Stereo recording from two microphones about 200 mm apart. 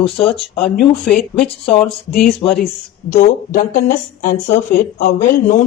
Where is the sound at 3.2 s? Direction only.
45° left (ahead or behind).